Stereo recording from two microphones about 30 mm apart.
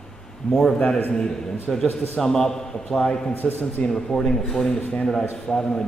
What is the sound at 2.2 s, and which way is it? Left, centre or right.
A man's voice, centre.